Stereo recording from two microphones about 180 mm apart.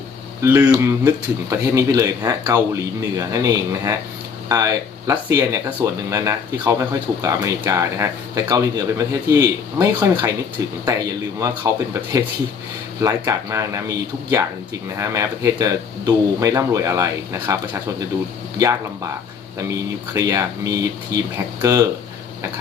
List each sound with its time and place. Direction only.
0.4 s speech: 15° right (ahead or behind)
11.3 s speech: 15° right (ahead or behind)
19.6 s speech: 15° right (ahead or behind)